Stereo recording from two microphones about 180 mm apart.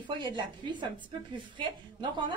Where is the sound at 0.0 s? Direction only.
25° right (ahead or behind).